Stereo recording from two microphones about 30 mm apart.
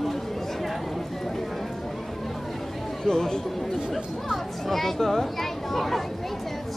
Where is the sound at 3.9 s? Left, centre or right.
Centre.